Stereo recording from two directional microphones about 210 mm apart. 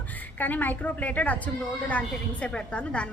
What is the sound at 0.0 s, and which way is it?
A woman's voice, 10° left (ahead or behind).